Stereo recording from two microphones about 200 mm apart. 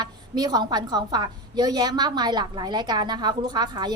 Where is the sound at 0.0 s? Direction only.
20° right (ahead or behind).